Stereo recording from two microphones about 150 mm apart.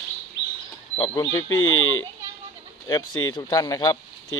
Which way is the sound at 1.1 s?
20° left (ahead or behind).